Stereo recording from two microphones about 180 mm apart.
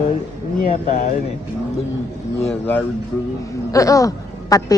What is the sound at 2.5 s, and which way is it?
A woman's voice, 10° left (ahead or behind).